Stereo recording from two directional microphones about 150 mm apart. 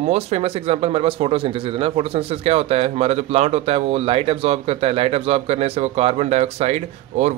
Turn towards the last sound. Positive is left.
turn(degrees=-50)  # may be behind; listen again after turning